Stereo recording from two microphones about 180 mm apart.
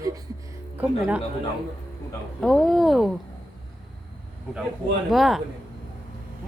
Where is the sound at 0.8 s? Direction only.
5° right (ahead or behind).